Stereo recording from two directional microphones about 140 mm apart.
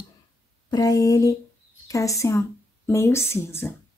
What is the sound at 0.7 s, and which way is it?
Speech, 25° left (ahead or behind).